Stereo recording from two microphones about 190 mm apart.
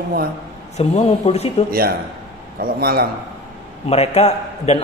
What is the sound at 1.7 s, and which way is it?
Speech, 50° right (ahead or behind).